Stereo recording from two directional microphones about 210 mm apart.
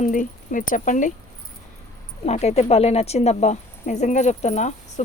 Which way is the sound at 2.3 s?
30° left (ahead or behind).